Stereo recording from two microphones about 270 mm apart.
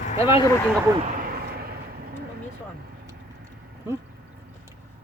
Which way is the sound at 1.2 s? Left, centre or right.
Right.